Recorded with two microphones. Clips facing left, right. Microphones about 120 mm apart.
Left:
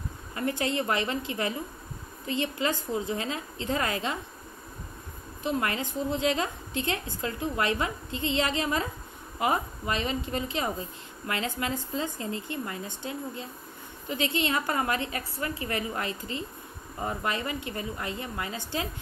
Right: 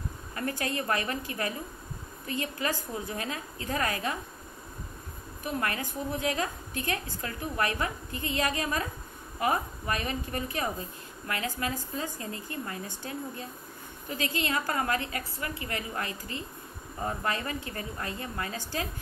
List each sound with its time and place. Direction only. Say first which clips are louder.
0.4 s a woman's voice: left 3 dB; 20° left (ahead or behind)
5.4 s a woman's voice: left 3 dB; 25° left (ahead or behind)